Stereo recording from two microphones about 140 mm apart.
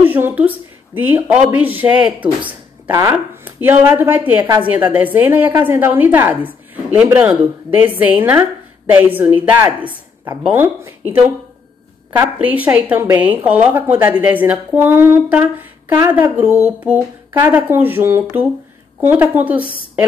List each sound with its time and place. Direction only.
0.0 s a woman's voice: 15° right (ahead or behind)
2.9 s speech: 25° right (ahead or behind)
3.4 s a woman's voice: 15° right (ahead or behind)